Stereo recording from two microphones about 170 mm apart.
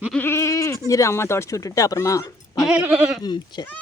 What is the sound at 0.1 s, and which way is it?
Goat, 10° left (ahead or behind).